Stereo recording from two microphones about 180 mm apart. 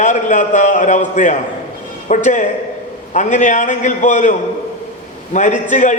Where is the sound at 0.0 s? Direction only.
45° left (ahead or behind).